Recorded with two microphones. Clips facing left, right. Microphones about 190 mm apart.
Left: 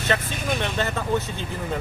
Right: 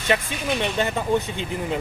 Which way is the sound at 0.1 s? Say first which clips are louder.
Right 3 dB; 15° right (ahead or behind).